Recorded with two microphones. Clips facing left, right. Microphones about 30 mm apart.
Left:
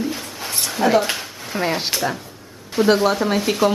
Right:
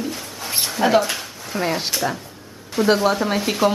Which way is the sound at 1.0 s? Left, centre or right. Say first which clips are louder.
Even; centre.